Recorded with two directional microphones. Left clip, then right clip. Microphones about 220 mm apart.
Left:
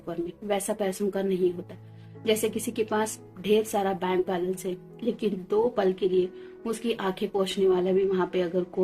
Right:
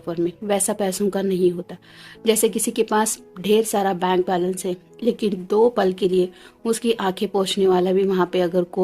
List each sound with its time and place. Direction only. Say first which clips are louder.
0.0 s speech: right 9 dB; 55° right (ahead or behind)